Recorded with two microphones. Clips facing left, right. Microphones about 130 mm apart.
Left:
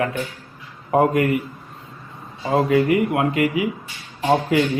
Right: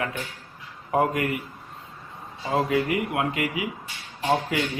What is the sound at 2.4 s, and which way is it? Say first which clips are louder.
Speech: left 6 dB; 50° left (ahead or behind).